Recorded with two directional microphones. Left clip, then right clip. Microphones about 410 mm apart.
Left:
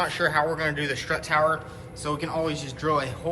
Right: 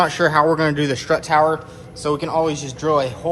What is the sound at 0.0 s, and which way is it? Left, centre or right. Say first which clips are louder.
A man's voice: right 8 dB; centre.